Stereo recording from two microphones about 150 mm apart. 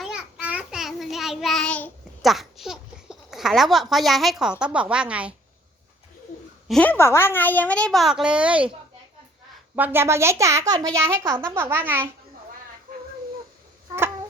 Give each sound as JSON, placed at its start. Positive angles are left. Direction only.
{"t": 0.0, "sound": "child singing", "side_deg": -5}
{"t": 4.6, "sound": "a child's voice", "side_deg": -5}
{"t": 6.7, "sound": "a woman's voice", "side_deg": 10}
{"t": 9.7, "sound": "a child's voice", "side_deg": -15}